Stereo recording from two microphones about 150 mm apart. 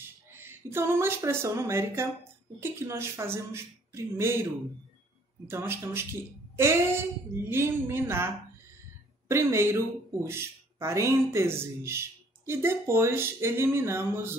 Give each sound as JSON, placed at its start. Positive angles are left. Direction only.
{"t": 0.3, "sound": "speech", "side_deg": -15}
{"t": 5.5, "sound": "speech", "side_deg": -15}
{"t": 9.3, "sound": "speech", "side_deg": -20}